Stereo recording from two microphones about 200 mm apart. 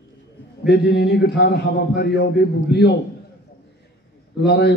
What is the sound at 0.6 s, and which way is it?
A man's voice, 55° left (ahead or behind).